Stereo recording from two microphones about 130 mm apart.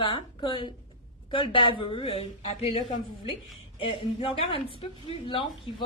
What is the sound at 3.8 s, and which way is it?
A woman's voice, 45° left (ahead or behind).